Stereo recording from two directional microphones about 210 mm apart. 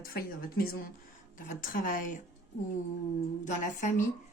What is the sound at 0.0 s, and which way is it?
Speech, 45° left (ahead or behind).